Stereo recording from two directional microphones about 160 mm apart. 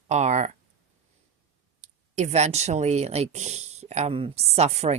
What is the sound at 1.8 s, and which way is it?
Speech, 45° right (ahead or behind).